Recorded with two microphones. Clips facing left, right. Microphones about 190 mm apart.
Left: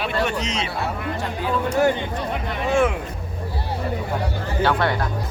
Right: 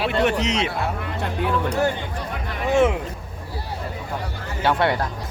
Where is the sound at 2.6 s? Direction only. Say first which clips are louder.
Right 2 dB; 20° right (ahead or behind).